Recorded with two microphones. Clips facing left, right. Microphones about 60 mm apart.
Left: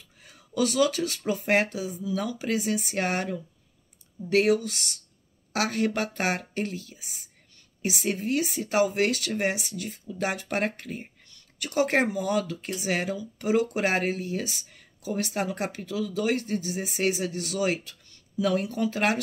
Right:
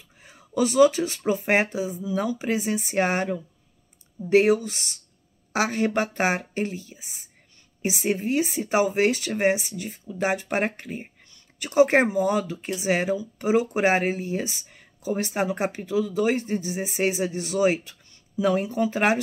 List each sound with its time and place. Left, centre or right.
0.2 s speech: right